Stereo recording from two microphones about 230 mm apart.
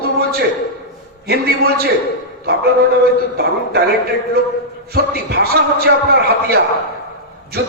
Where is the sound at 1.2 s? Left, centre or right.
Right.